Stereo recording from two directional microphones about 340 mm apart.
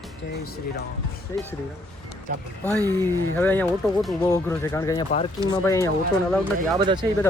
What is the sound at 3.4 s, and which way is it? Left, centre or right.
Speech, centre.